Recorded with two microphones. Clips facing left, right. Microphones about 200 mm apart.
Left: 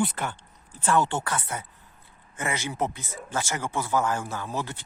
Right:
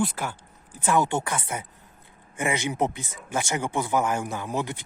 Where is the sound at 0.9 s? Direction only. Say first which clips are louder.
Right 1 dB; 10° right (ahead or behind).